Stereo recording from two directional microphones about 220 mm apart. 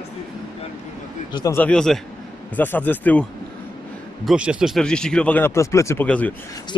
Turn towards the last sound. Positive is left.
turn(degrees=5)  # may be behind; listen again after turning